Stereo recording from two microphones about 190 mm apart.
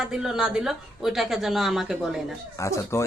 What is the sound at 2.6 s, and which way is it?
Speech, 15° left (ahead or behind).